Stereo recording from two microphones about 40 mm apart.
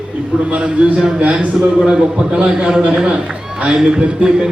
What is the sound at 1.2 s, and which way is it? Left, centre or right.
Speech, right.